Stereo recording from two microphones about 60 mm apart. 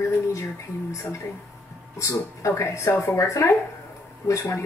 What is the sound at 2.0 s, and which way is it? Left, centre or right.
A woman's voice, left.